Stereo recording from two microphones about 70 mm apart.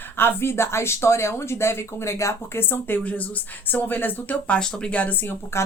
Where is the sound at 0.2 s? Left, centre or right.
Left.